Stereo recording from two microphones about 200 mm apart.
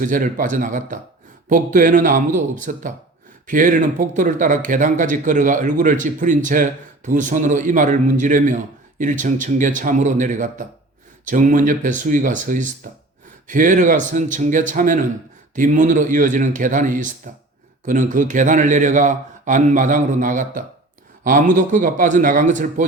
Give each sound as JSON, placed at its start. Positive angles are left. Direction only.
{"t": 0.0, "sound": "speech", "side_deg": -40}